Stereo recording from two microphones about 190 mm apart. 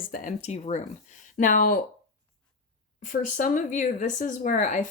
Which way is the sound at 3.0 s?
40° left (ahead or behind).